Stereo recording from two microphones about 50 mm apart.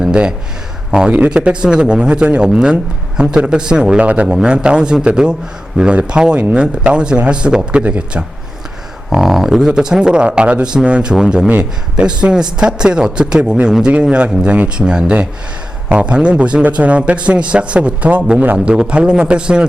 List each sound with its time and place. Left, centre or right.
0.0 s a sound: centre
0.9 s a man's voice: centre
9.0 s a man's voice: centre